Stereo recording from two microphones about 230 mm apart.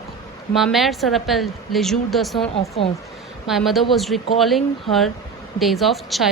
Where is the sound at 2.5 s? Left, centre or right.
Left.